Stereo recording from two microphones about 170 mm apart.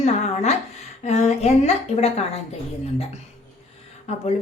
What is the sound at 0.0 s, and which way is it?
A woman's voice, 40° left (ahead or behind).